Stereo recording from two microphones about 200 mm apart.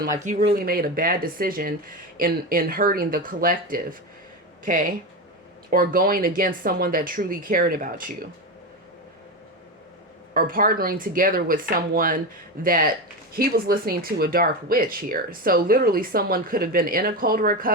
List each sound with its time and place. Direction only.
0.2 s speech: 40° right (ahead or behind)
10.3 s speech: 45° right (ahead or behind)